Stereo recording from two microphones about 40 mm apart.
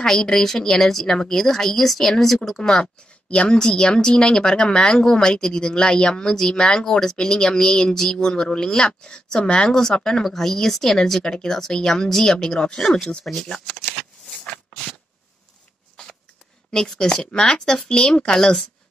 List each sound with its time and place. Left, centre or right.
0.0 s speech: centre
3.3 s speech: left
13.2 s speech: centre
13.9 s shuffling cards: centre
16.7 s speech: centre